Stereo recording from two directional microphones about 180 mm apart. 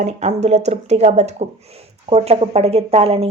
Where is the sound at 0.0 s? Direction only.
40° right (ahead or behind).